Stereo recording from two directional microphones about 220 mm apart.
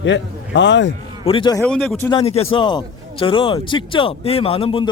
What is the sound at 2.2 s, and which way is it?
A man's voice, 25° left (ahead or behind).